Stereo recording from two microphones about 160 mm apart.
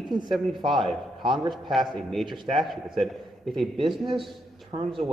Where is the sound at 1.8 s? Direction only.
Centre (ahead or behind).